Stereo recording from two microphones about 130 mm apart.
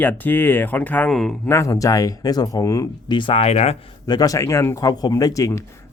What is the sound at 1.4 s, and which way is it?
Speech, 20° left (ahead or behind).